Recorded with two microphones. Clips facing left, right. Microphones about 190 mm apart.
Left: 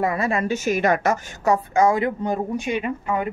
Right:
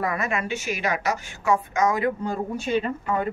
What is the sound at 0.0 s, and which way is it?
A woman's voice, 25° left (ahead or behind).